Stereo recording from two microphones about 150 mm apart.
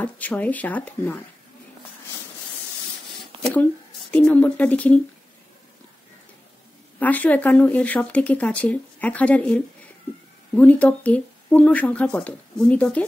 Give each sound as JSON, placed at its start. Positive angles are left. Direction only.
{"t": 0.0, "sound": "speech", "side_deg": 10}
{"t": 4.1, "sound": "speech", "side_deg": 10}
{"t": 7.0, "sound": "speech", "side_deg": 10}